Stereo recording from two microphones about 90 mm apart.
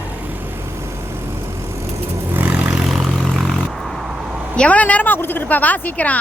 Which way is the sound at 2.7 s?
5° right (ahead or behind).